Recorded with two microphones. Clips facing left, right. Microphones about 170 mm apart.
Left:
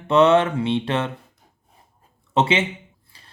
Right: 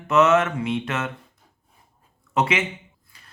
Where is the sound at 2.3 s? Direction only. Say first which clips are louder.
Left 3 dB; 30° left (ahead or behind).